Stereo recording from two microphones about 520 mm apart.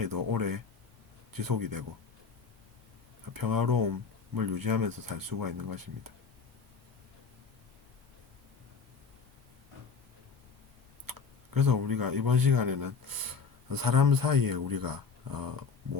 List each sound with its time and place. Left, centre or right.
0.0 s speech: right
3.3 s speech: right
11.0 s speech: right